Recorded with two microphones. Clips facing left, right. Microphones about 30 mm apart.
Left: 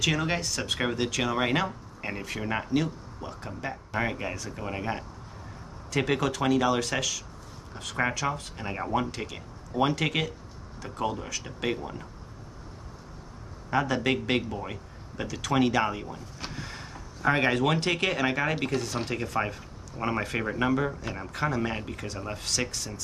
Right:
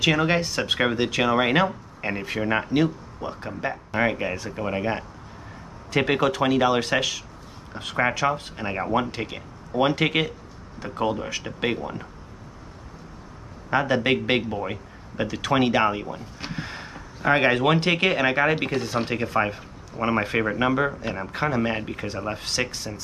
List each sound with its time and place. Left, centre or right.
0.0 s speech: right
13.7 s speech: right